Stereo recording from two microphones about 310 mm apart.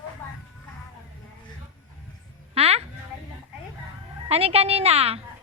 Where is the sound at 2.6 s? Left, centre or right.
Centre.